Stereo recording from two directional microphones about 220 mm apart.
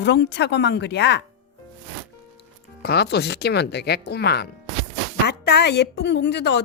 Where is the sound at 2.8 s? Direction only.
50° left (ahead or behind).